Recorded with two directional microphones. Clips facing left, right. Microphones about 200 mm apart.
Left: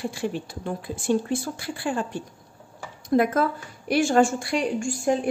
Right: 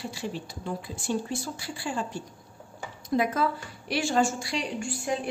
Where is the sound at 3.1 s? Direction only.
55° left (ahead or behind).